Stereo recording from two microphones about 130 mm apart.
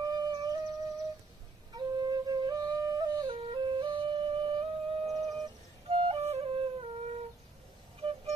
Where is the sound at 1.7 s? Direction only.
30° right (ahead or behind).